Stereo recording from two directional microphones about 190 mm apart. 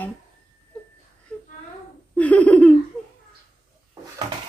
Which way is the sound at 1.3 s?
5° left (ahead or behind).